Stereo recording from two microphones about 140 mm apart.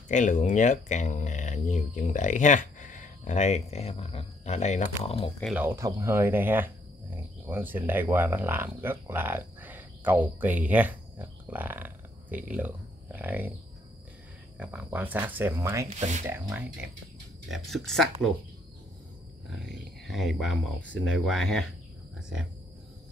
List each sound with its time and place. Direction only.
0.1 s speech: 60° left (ahead or behind); by 5.3 s 45° left (ahead or behind)
5.4 s speech: 10° right (ahead or behind)
5.8 s speech: 25° right (ahead or behind)
14.6 s speech: 10° right (ahead or behind)
16.0 s speech: 60° right (ahead or behind)
16.3 s speech: 20° right (ahead or behind)
17.5 s speech: centre (ahead or behind)
19.6 s speech: centre (ahead or behind)